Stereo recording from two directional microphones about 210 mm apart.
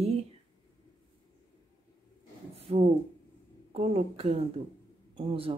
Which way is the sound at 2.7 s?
25° right (ahead or behind).